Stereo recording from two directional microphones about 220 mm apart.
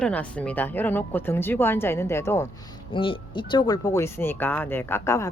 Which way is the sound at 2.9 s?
25° left (ahead or behind).